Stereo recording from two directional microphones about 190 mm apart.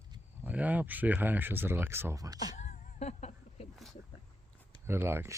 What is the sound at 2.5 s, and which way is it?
Music, 40° left (ahead or behind).